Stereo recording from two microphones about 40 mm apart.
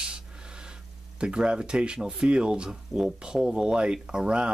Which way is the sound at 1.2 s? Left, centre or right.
Right.